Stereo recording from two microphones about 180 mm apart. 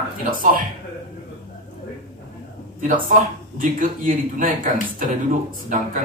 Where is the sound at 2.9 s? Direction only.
50° right (ahead or behind).